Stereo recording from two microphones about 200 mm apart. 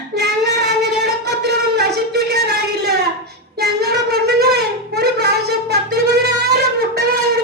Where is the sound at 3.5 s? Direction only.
55° right (ahead or behind).